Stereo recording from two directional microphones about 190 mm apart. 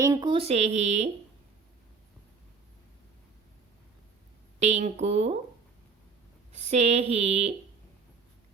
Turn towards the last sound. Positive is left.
turn(degrees=-35)  # may be behind; listen again after turning